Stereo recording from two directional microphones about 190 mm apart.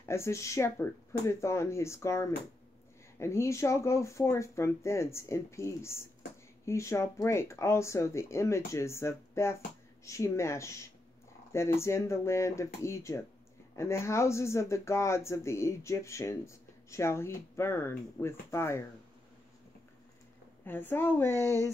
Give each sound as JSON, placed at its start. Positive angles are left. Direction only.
{"t": 0.0, "sound": "speech", "side_deg": 15}
{"t": 20.6, "sound": "speech", "side_deg": 10}